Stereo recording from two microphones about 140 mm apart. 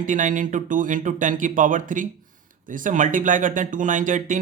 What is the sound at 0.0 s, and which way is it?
Speech, 65° right (ahead or behind).